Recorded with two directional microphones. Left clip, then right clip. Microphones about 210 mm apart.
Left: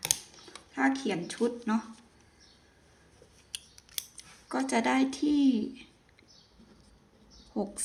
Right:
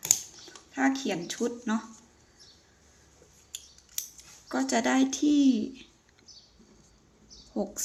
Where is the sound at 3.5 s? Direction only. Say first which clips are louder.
Left 2 dB; 40° left (ahead or behind).